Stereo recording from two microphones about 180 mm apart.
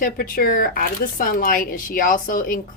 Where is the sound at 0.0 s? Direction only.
50° left (ahead or behind).